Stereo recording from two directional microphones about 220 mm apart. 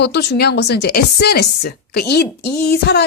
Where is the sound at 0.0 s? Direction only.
50° left (ahead or behind).